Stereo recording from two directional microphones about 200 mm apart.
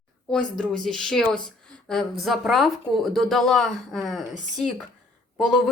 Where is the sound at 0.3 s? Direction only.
5° left (ahead or behind).